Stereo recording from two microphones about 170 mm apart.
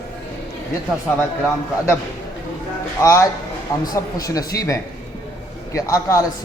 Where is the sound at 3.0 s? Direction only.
15° left (ahead or behind).